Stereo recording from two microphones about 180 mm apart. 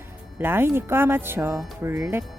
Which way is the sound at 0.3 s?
10° right (ahead or behind).